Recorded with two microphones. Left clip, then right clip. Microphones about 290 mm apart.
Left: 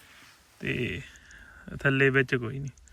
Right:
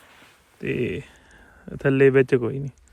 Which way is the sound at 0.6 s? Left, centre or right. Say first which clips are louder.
Right 5 dB; centre.